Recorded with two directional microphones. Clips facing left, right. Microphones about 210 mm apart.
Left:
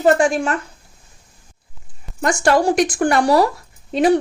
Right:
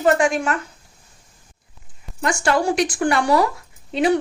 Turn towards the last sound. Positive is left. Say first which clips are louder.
# left 3 dB
turn(degrees=40)  # may be behind; listen again after turning